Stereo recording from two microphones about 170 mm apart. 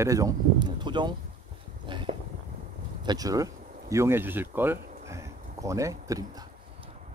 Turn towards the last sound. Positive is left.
turn(degrees=-20)  # may be behind; listen again after turning